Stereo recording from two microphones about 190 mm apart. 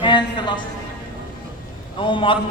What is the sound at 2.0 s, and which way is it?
Speech, 25° left (ahead or behind).